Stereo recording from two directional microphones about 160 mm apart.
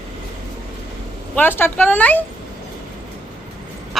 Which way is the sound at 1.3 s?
10° left (ahead or behind).